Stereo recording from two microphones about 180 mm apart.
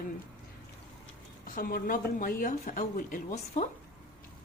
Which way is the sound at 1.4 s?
50° left (ahead or behind).